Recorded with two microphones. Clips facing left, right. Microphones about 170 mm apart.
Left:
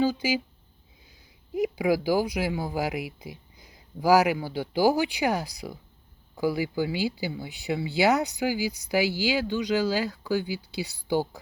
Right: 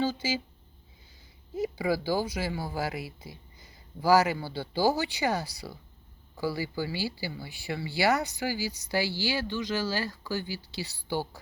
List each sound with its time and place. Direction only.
0.0 s speech: 15° left (ahead or behind)
1.5 s speech: 15° left (ahead or behind)